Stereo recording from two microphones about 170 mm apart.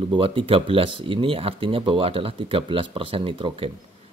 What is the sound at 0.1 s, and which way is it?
A man's voice, 30° right (ahead or behind).